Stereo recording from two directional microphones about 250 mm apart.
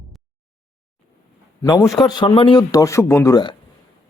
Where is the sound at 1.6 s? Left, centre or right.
Centre.